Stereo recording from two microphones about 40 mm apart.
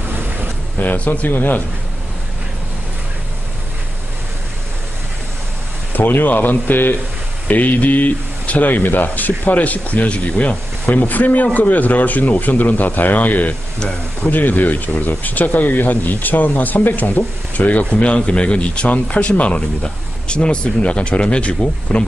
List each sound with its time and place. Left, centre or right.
0.7 s speech: left
1.3 s speech: left
5.9 s speech: left
7.4 s speech: left
11.0 s speech: left
17.8 s speech: left
19.8 s speech: left